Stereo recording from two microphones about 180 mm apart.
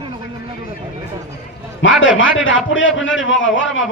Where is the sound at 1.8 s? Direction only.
90° left.